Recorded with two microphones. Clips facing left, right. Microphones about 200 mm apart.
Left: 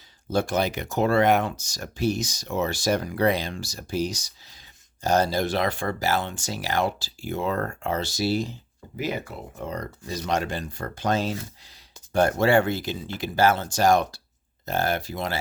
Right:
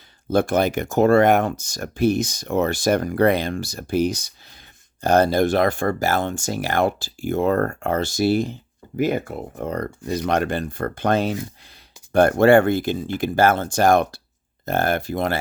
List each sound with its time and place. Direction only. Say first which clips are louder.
0.3 s speech: right 5 dB; 55° right (ahead or behind)